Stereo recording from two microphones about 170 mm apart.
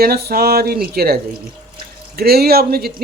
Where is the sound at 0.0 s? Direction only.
65° right (ahead or behind).